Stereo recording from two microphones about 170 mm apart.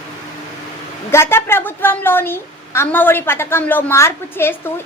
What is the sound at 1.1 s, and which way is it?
A woman's voice, 15° left (ahead or behind).